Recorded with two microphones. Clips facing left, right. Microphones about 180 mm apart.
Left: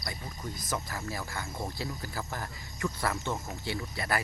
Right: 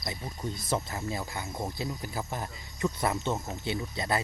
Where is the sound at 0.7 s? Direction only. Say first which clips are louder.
Right 4 dB; 20° right (ahead or behind).